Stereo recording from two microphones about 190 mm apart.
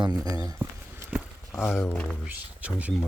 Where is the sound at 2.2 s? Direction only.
10° right (ahead or behind).